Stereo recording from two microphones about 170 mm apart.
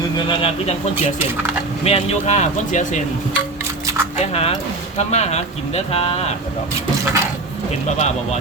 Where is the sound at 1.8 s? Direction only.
35° left (ahead or behind).